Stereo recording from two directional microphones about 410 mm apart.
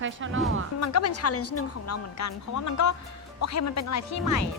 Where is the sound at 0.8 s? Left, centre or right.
Left.